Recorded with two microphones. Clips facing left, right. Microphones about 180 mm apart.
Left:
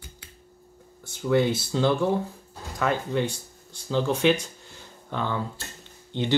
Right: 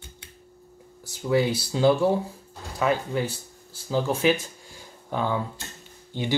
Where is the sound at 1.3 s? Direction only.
Centre (ahead or behind).